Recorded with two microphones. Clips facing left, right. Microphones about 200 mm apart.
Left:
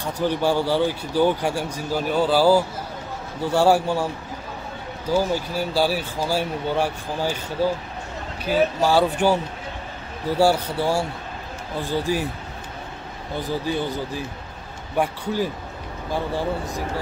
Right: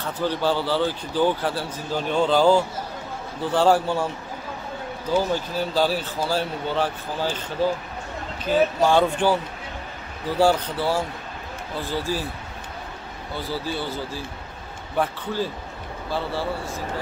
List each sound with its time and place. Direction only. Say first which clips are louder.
0.0 s a man's voice: left 2 dB; 15° left (ahead or behind)
5.1 s a man's voice: left 1 dB; 10° left (ahead or behind)
13.4 s a man's voice: left 4 dB; 15° left (ahead or behind)